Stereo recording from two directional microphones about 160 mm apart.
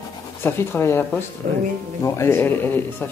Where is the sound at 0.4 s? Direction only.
15° left (ahead or behind).